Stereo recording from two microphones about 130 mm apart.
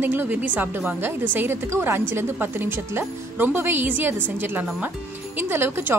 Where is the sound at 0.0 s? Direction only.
15° right (ahead or behind).